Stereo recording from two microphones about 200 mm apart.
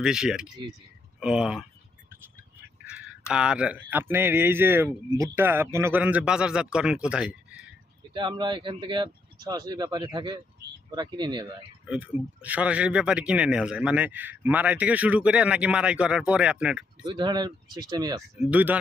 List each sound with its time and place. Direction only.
0.0 s speech: 5° right (ahead or behind)
2.9 s speech: 5° right (ahead or behind)
8.1 s speech: 25° right (ahead or behind)
11.9 s speech: 5° right (ahead or behind)
17.0 s speech: 20° right (ahead or behind)
18.3 s speech: 5° right (ahead or behind)